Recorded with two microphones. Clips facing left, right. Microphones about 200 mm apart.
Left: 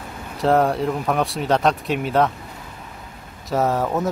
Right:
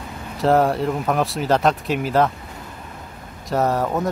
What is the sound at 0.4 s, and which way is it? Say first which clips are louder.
Speech: right 1 dB; centre (ahead or behind).